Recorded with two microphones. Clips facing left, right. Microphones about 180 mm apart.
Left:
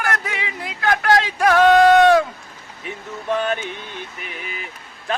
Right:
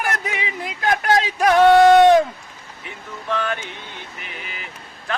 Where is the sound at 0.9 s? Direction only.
15° right (ahead or behind).